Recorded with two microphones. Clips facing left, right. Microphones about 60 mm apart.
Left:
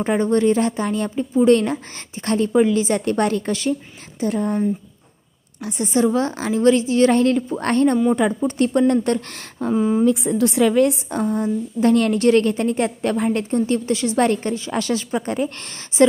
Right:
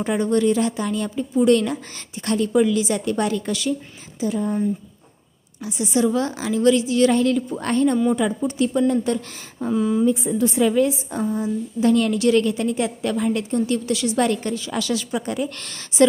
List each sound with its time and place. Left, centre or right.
0.0 s a woman's voice: left
4.2 s a woman's voice: left
5.6 s a woman's voice: left
9.7 s a woman's voice: left
10.0 s a woman's voice: left